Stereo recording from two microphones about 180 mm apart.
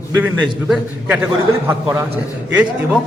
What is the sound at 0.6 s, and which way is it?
A man's voice, 10° right (ahead or behind).